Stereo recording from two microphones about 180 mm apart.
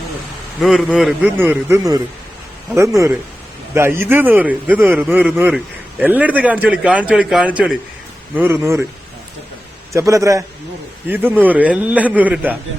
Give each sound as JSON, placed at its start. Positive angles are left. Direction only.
{"t": 0.6, "sound": "a man's voice", "side_deg": 0}
{"t": 9.9, "sound": "a man's voice", "side_deg": -15}